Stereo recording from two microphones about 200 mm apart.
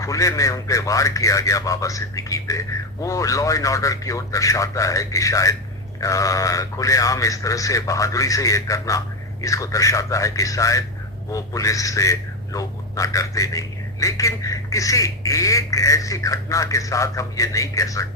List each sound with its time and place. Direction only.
0.0 s a man's voice: 15° left (ahead or behind)